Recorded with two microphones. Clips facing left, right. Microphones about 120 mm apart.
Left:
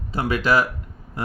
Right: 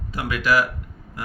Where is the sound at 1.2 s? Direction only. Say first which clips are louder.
Left 5 dB; 30° left (ahead or behind).